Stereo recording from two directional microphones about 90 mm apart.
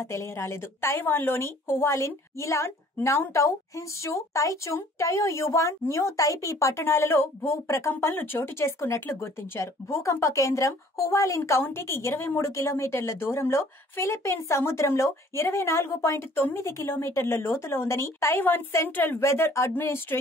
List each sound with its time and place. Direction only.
0.0 s a woman's voice: 30° left (ahead or behind)